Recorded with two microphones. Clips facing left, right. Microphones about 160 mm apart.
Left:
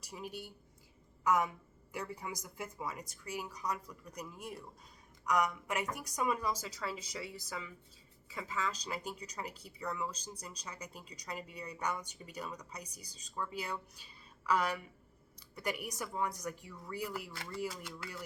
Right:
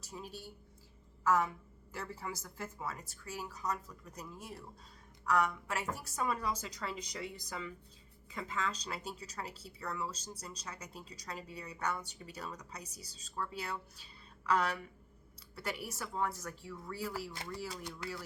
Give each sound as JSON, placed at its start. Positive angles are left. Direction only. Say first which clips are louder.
{"t": 0.0, "sound": "speech", "louder": "left 2 dB", "side_deg": 15}